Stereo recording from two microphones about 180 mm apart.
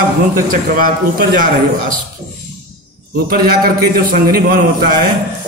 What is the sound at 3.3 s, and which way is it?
A man's voice, 55° right (ahead or behind).